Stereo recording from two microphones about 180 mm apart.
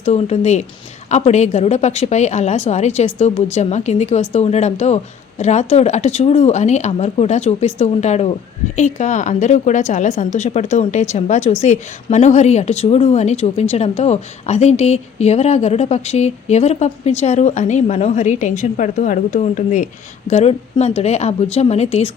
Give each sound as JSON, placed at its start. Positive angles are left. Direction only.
{"t": 0.0, "sound": "speech", "side_deg": 35}